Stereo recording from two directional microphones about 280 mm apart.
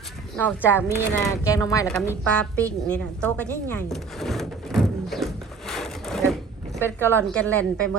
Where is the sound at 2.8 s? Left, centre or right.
Centre.